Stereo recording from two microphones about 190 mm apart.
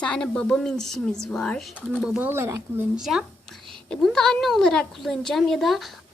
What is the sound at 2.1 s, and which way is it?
Speech, 10° right (ahead or behind).